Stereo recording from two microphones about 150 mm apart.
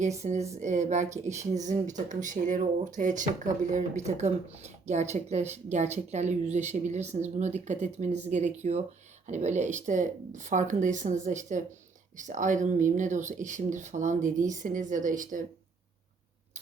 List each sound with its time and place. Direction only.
0.0 s speech: 50° right (ahead or behind)